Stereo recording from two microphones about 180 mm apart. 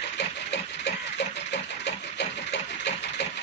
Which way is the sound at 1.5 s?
70° left (ahead or behind).